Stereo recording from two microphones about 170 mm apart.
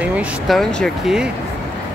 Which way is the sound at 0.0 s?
5° right (ahead or behind).